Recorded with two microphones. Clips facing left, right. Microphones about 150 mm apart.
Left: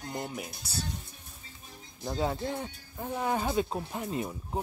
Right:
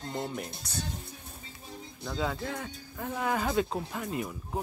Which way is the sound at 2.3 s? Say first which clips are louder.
Left 2 dB; 25° left (ahead or behind).